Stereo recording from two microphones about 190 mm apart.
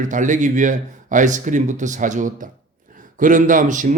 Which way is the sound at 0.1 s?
40° right (ahead or behind).